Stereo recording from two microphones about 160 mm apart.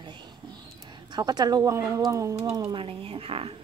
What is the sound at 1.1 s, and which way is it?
Speech, 25° right (ahead or behind).